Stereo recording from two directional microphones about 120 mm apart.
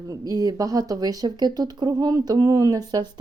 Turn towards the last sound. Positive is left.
turn(degrees=-35)  # may be behind; listen again after turning